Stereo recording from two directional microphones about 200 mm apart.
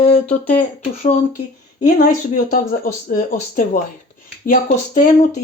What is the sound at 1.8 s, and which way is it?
Speech, 40° left (ahead or behind).